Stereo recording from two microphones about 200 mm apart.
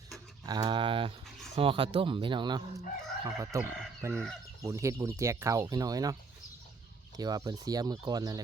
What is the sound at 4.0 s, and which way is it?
Chicken, 10° right (ahead or behind).